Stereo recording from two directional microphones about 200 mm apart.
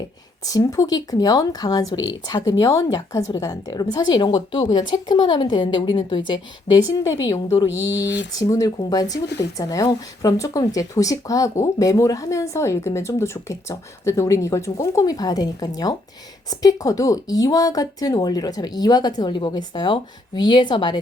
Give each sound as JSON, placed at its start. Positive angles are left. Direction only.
{"t": 0.4, "sound": "speech", "side_deg": 15}
{"t": 7.7, "sound": "speech", "side_deg": 70}
{"t": 8.4, "sound": "speech", "side_deg": 20}